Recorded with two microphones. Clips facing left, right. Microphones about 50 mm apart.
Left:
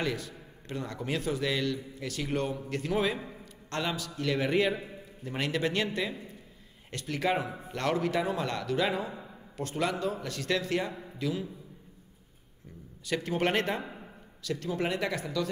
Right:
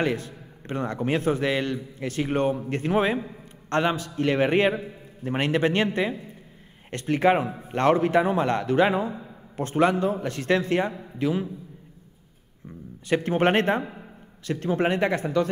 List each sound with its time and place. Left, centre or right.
0.0 s a man's voice: right
13.0 s a man's voice: right